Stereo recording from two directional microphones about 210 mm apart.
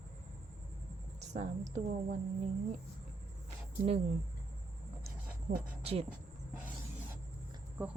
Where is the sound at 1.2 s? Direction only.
35° right (ahead or behind).